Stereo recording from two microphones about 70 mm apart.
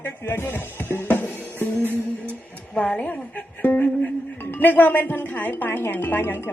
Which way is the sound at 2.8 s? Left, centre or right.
Centre.